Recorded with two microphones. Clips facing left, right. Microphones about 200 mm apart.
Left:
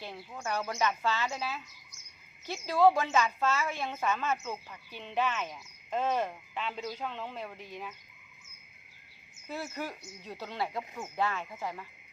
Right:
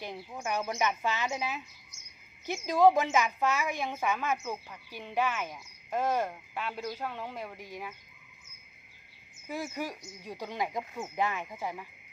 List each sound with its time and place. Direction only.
0.0 s a woman's voice: 15° right (ahead or behind)
9.5 s a woman's voice: 15° right (ahead or behind)